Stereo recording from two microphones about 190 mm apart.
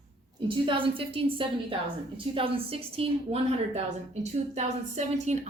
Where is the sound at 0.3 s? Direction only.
25° right (ahead or behind).